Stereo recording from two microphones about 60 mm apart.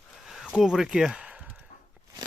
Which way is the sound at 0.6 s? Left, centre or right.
Centre.